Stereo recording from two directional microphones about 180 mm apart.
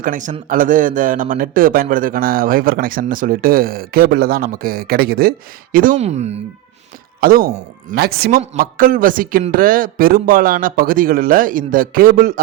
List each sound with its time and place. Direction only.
0.0 s speech: 45° right (ahead or behind)
5.7 s speech: 50° right (ahead or behind)
7.2 s speech: 55° right (ahead or behind)